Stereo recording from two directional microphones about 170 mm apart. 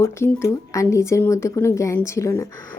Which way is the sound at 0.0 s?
15° left (ahead or behind).